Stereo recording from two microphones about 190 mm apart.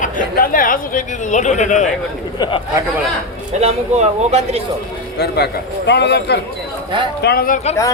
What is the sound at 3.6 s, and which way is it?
Speech, 35° right (ahead or behind).